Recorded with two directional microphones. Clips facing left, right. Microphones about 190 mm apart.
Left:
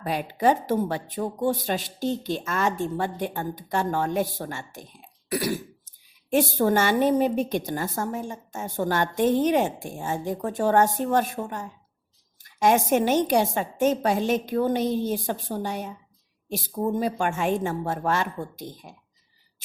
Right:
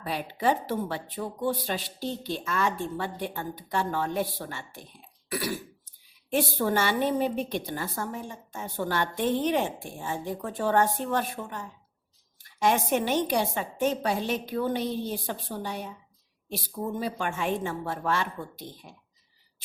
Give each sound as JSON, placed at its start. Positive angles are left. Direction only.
{"t": 0.0, "sound": "a woman's voice", "side_deg": 45}
{"t": 5.3, "sound": "throat clearing", "side_deg": 40}
{"t": 6.3, "sound": "a woman's voice", "side_deg": 45}